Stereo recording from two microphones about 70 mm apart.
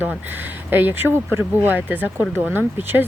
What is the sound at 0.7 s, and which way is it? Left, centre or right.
Speech, right.